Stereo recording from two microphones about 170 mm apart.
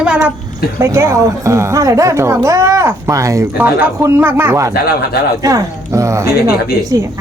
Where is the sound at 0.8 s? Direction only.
15° right (ahead or behind).